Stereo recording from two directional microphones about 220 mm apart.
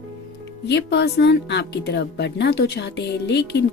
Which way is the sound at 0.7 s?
50° left (ahead or behind).